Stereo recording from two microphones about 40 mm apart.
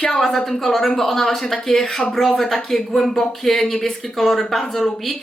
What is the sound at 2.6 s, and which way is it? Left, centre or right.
A woman's voice, centre.